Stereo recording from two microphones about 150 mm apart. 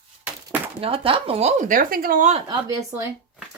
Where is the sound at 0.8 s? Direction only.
40° right (ahead or behind); by 2.4 s 55° right (ahead or behind).